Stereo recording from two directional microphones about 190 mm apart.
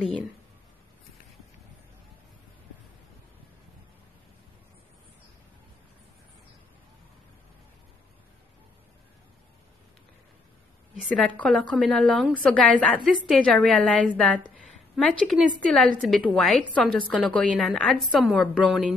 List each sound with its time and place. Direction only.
11.0 s a woman's voice: 5° left (ahead or behind)